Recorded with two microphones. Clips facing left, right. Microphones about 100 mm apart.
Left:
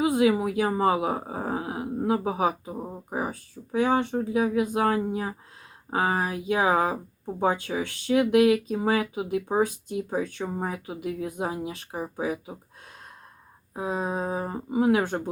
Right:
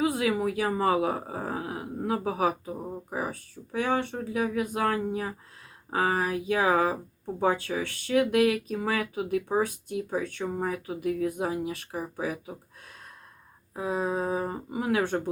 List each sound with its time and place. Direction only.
0.0 s speech: 20° left (ahead or behind)
2.7 s speech: 10° left (ahead or behind)
3.1 s speech: 25° left (ahead or behind)
13.7 s speech: 25° left (ahead or behind)